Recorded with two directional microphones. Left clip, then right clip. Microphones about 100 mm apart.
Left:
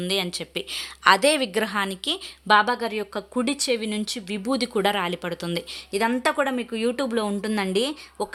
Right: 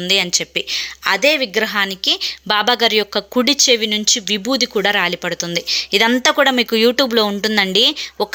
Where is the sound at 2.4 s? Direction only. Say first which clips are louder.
Right 4 dB; 20° right (ahead or behind).